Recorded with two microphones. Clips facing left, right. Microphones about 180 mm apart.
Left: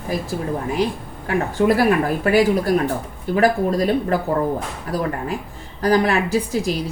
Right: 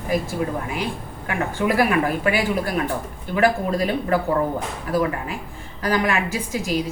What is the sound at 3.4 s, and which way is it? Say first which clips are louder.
Speech: left 2 dB; 40° left (ahead or behind).